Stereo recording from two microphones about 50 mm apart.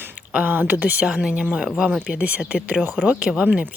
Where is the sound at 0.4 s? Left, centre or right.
Right.